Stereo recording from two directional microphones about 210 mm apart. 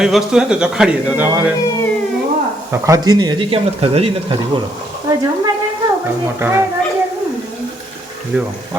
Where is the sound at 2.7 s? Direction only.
15° right (ahead or behind).